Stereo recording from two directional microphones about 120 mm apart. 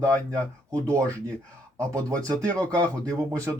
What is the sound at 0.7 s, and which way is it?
Speech, 25° right (ahead or behind).